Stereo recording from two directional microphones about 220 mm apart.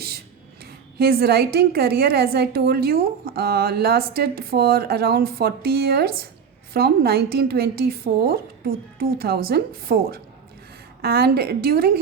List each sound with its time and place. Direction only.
0.6 s a woman's voice: 45° right (ahead or behind)